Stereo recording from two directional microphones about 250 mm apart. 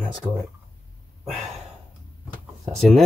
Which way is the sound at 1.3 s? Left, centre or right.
Centre.